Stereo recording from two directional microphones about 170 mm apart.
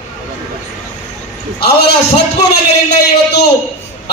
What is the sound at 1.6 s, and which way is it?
Speech, 75° left (ahead or behind).